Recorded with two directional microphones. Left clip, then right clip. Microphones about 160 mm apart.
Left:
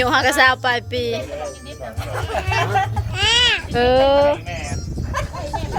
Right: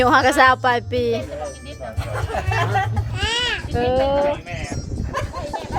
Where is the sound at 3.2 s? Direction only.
35° left (ahead or behind).